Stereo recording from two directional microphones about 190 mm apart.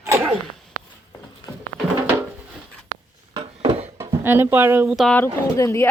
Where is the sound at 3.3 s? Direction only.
30° right (ahead or behind).